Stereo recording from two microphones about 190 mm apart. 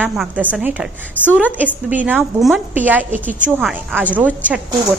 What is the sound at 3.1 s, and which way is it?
Speech, 45° right (ahead or behind).